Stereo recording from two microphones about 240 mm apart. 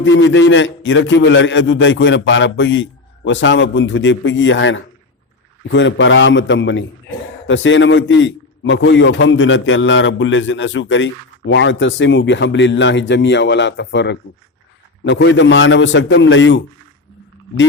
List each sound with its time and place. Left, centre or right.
0.0 s a man's voice: left